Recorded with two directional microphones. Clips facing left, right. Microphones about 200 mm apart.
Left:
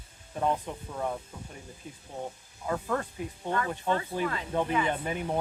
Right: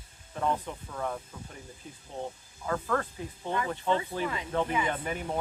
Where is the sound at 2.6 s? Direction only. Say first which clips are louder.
Even; 20° left (ahead or behind).